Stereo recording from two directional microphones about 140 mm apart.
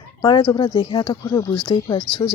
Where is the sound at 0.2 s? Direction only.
35° left (ahead or behind).